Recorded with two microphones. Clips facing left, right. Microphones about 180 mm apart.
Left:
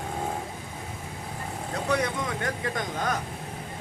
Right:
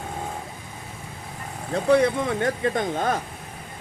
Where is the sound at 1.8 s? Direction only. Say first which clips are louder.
Right 9 dB; 30° right (ahead or behind).